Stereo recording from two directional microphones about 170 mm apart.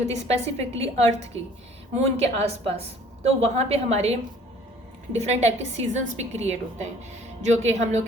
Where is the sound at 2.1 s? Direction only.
40° right (ahead or behind).